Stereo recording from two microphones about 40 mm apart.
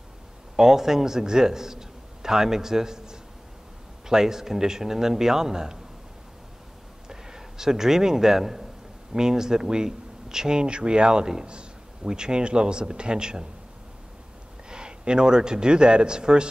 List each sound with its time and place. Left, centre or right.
0.6 s a man's voice: centre
7.1 s a man's voice: centre
14.7 s a man's voice: right